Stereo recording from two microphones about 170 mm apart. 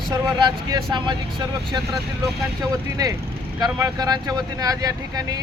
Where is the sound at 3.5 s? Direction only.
25° right (ahead or behind).